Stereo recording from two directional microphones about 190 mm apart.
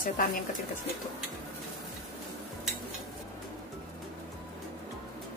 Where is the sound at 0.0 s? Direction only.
50° left (ahead or behind).